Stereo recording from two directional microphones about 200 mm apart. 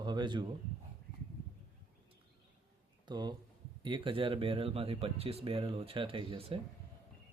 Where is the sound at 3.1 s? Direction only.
20° right (ahead or behind).